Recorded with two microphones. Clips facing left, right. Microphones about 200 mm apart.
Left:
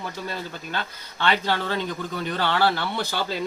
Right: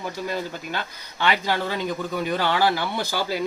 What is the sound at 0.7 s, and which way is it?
Speech, 10° right (ahead or behind).